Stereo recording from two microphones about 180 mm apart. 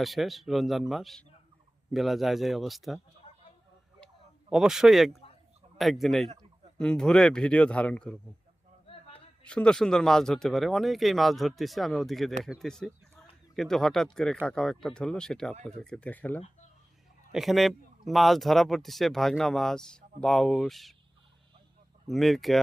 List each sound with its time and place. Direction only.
0.0 s speech: centre (ahead or behind)
4.0 s a sound: 5° right (ahead or behind)
5.7 s speech: centre (ahead or behind)
8.9 s a sound: 30° left (ahead or behind)
9.4 s speech: 5° left (ahead or behind)
22.0 s speech: centre (ahead or behind)